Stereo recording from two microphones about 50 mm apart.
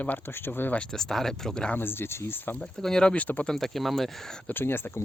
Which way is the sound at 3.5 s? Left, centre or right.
Centre.